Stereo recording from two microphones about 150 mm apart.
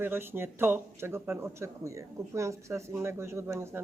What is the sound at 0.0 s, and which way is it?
Speech, 15° right (ahead or behind).